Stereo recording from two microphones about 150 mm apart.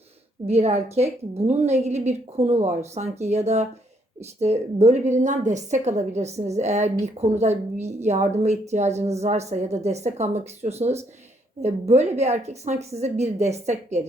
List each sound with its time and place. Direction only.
0.4 s a woman's voice: 45° right (ahead or behind)